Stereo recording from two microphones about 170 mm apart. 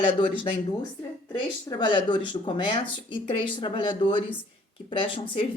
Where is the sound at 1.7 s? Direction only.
25° left (ahead or behind).